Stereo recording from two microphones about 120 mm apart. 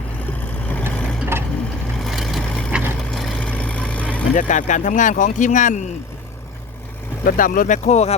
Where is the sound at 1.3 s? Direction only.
20° right (ahead or behind).